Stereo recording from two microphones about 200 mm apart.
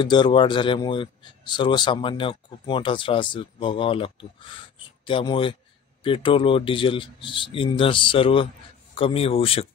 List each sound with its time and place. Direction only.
0.0 s speech: 20° left (ahead or behind)